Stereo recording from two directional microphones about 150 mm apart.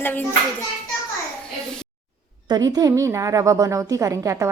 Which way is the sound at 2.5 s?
25° right (ahead or behind).